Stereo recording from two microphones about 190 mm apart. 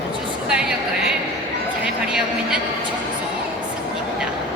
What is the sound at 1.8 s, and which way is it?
Speech, 5° right (ahead or behind).